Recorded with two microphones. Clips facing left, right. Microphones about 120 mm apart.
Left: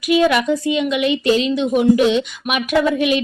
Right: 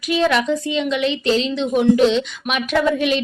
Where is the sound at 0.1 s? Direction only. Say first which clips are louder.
Left 3 dB; 10° left (ahead or behind).